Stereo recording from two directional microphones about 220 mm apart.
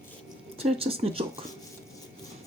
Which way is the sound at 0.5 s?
25° right (ahead or behind).